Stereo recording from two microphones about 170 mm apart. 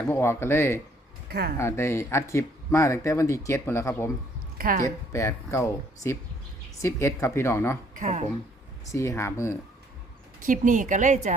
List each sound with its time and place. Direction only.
0.1 s speech: 15° left (ahead or behind)
1.3 s speech: 65° right (ahead or behind)
1.5 s speech: 15° left (ahead or behind)
4.5 s a sound: 60° right (ahead or behind)
4.8 s speech: 15° left (ahead or behind)
7.9 s a woman's voice: 45° right (ahead or behind)
8.9 s speech: 15° left (ahead or behind)
10.4 s a woman's voice: 50° right (ahead or behind)